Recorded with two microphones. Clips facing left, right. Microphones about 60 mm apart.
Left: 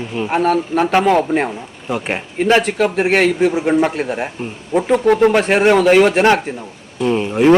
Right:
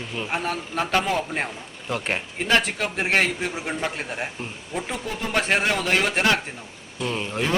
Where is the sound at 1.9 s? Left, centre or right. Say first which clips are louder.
Left 6 dB; centre.